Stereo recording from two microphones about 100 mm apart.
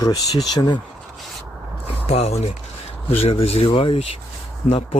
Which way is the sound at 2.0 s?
90° left.